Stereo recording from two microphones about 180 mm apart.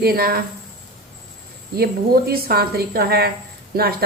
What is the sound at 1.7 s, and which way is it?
A woman's voice, 60° right (ahead or behind).